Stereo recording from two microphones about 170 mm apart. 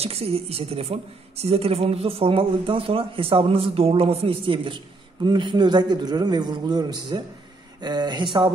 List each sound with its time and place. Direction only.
0.0 s a woman's voice: 35° right (ahead or behind)